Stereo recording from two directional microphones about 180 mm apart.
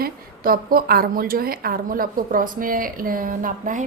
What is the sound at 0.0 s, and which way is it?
A woman's voice, 55° right (ahead or behind).